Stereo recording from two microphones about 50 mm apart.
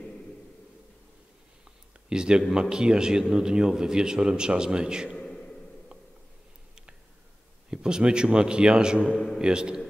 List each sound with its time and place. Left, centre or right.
2.0 s a man's voice: centre
5.1 s a sound: centre
7.7 s a man's voice: centre
9.1 s a man's voice: centre
9.4 s a man's voice: centre